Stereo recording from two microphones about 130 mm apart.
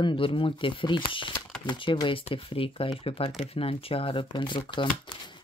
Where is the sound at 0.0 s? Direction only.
40° left (ahead or behind).